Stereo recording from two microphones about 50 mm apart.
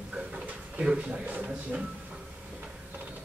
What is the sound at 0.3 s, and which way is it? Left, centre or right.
Drawer open or close, right.